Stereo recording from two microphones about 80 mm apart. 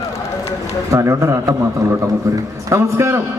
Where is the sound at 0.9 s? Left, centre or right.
Right.